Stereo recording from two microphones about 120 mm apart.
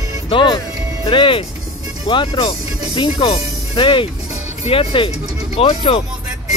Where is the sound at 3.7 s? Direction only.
45° left (ahead or behind).